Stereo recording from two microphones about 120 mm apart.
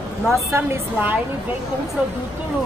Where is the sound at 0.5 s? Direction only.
20° right (ahead or behind).